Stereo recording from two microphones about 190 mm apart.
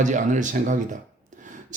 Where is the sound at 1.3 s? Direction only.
40° right (ahead or behind).